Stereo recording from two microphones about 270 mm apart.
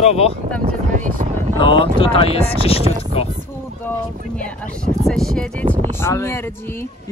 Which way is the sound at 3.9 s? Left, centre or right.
Centre.